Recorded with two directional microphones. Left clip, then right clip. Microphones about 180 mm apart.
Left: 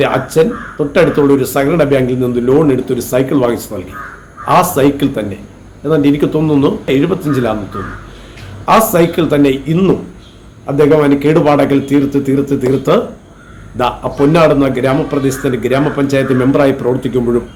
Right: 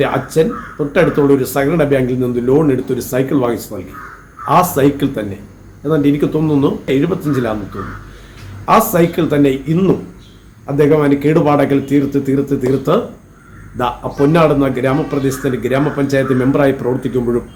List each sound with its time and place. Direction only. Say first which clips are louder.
0.0 s speech: left 3 dB; 5° right (ahead or behind)
8.9 s speech: left 3 dB; 5° right (ahead or behind)